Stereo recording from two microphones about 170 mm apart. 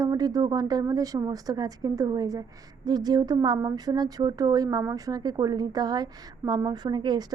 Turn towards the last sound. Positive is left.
turn(degrees=-25)  # may be behind; listen again after turning